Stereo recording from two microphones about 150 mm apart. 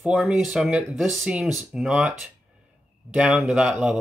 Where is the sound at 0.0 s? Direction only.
5° right (ahead or behind).